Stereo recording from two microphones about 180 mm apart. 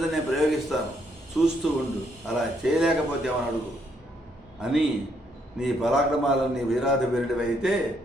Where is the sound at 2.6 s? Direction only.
5° right (ahead or behind).